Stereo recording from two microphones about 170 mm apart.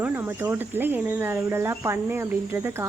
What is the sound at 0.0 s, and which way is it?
Speech, 10° right (ahead or behind).